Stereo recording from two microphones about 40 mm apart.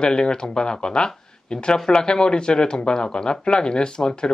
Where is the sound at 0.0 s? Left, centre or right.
Left.